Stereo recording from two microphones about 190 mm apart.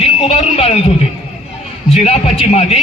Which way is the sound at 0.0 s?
30° left (ahead or behind).